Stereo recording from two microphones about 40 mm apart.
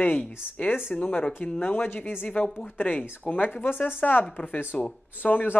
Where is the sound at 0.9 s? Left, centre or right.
Left.